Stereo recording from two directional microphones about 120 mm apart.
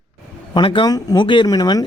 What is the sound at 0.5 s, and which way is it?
Speech, 45° left (ahead or behind).